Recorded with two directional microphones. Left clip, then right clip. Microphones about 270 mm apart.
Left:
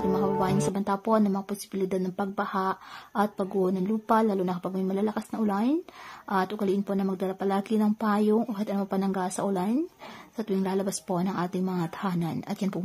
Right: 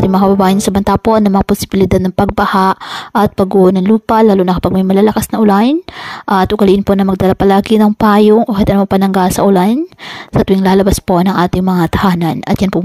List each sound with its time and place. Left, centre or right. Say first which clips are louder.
0.2 s a woman's voice: right 15 dB; right